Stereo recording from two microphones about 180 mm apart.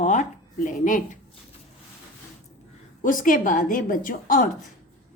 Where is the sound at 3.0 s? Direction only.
50° left (ahead or behind).